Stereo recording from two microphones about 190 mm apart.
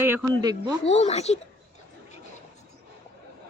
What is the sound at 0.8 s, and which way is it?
Speech, 35° left (ahead or behind).